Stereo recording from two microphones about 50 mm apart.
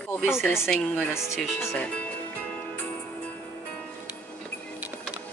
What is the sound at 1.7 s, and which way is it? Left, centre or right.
Speech, left.